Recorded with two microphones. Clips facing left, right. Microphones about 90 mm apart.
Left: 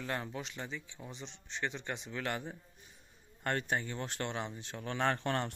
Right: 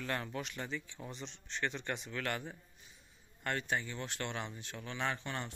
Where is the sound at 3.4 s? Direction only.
40° left (ahead or behind).